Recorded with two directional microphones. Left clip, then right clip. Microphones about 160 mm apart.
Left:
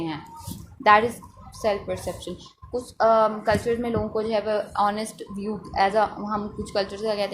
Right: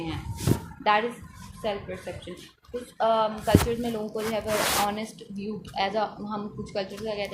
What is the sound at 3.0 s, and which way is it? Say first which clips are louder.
Speech: left 5 dB; 40° left (ahead or behind).